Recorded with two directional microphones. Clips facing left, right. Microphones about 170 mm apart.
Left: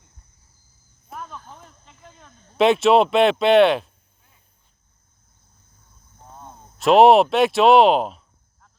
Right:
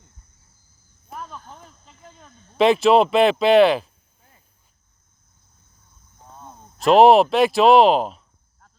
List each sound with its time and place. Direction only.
1.1 s speech: centre (ahead or behind)
6.2 s a sound: 15° left (ahead or behind)
6.5 s speech: centre (ahead or behind)